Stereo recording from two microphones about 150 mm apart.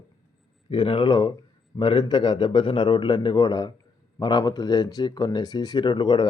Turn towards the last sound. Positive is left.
turn(degrees=30)  # may be behind; listen again after turning